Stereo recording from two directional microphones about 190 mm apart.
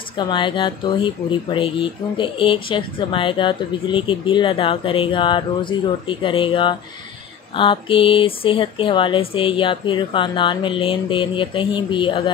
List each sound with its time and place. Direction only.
0.2 s speech: 25° left (ahead or behind)